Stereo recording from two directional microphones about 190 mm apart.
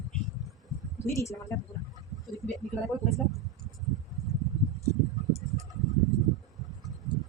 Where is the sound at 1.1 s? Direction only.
15° left (ahead or behind).